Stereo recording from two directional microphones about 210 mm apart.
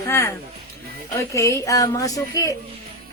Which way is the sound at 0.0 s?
15° left (ahead or behind).